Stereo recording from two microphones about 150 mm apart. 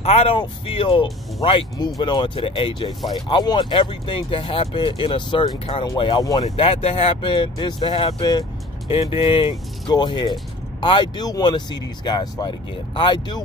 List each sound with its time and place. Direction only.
0.0 s speech: 45° left (ahead or behind); by 6.5 s 25° left (ahead or behind)
6.5 s speech: 40° left (ahead or behind)